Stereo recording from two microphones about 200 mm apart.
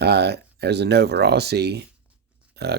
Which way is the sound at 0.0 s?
55° right (ahead or behind).